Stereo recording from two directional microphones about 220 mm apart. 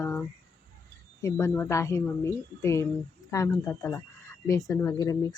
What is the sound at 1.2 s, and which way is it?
A woman's voice, 10° left (ahead or behind).